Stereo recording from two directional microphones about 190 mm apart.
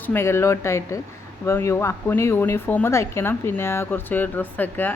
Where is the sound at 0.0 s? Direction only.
10° left (ahead or behind).